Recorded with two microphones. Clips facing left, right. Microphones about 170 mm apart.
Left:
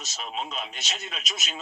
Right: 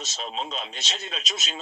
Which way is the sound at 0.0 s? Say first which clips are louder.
Right 2 dB; 30° right (ahead or behind).